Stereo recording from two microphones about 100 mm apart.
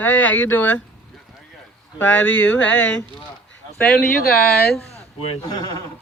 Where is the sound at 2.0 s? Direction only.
20° left (ahead or behind).